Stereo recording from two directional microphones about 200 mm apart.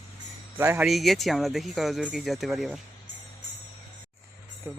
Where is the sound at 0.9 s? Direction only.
Centre (ahead or behind).